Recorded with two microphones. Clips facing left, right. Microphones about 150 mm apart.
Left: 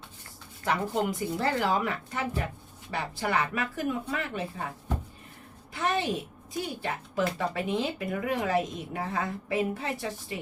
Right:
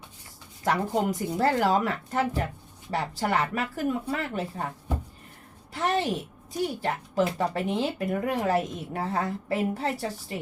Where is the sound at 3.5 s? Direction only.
40° right (ahead or behind).